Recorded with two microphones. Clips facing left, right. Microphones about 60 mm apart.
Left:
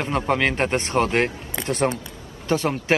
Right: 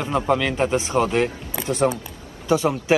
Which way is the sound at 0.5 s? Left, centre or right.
Left.